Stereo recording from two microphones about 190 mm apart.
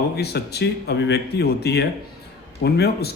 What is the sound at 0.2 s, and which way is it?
Speech, 60° left (ahead or behind).